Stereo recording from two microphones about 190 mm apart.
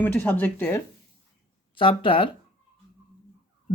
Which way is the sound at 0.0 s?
10° left (ahead or behind).